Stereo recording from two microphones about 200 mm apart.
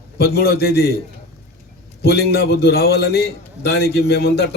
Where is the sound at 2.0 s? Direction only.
55° left (ahead or behind).